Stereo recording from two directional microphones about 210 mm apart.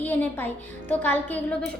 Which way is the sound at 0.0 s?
10° left (ahead or behind).